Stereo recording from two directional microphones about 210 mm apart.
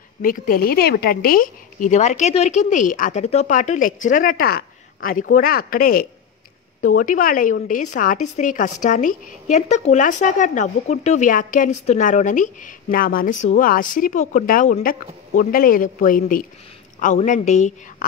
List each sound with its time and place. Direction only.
0.2 s a woman's voice: 40° left (ahead or behind)